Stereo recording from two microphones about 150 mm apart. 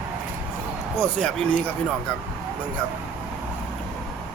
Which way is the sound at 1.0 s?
5° left (ahead or behind).